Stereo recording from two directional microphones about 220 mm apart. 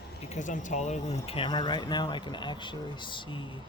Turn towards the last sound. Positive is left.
turn(degrees=20)  # may be behind; listen again after turning